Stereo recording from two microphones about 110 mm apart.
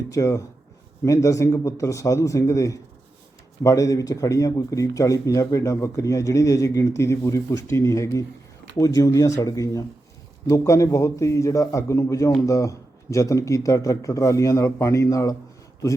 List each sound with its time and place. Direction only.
0.1 s speech: 30° left (ahead or behind)